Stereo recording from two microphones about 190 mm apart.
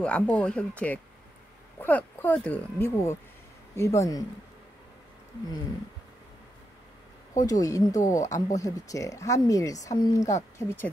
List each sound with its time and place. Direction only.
0.0 s speech: 5° left (ahead or behind)
7.3 s speech: 20° left (ahead or behind)